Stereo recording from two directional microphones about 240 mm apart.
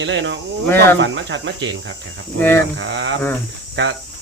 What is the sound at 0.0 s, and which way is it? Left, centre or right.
Speech, right.